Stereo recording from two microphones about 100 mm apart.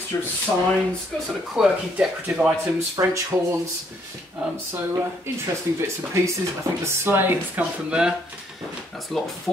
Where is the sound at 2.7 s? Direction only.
30° right (ahead or behind).